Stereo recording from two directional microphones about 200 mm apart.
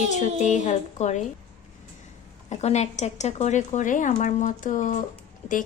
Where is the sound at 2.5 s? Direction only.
35° left (ahead or behind).